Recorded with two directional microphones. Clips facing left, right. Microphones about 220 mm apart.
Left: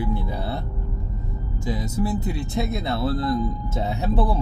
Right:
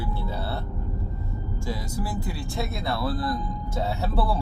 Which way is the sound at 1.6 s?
20° left (ahead or behind).